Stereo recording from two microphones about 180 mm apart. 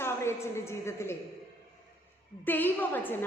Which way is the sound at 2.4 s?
10° left (ahead or behind).